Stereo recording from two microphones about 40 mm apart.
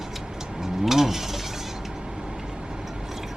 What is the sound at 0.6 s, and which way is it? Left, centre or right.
Mechanisms, centre.